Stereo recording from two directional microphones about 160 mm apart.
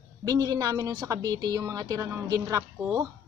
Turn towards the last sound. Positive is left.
turn(degrees=-20)  # may be behind; listen again after turning